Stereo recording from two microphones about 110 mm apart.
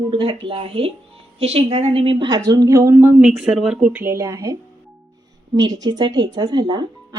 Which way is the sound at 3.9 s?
20° right (ahead or behind).